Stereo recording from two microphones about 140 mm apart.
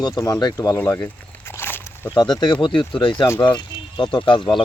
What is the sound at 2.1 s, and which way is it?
Speech, 30° left (ahead or behind).